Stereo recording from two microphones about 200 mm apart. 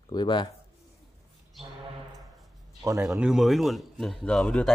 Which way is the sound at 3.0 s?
5° right (ahead or behind).